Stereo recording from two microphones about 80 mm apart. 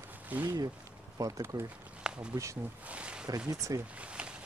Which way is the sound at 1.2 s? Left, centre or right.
Right.